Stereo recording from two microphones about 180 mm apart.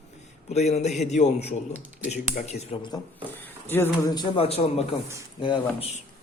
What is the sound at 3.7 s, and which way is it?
A man's voice, 15° left (ahead or behind).